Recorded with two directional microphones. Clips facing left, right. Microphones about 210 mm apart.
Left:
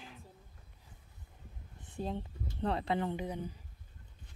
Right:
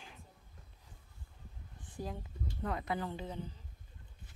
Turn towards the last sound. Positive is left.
turn(degrees=15)  # may be behind; listen again after turning